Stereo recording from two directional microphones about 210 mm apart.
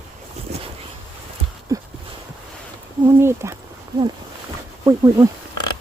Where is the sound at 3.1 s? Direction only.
15° right (ahead or behind).